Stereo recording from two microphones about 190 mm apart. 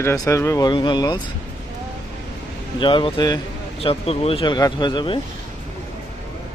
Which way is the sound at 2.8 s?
25° left (ahead or behind).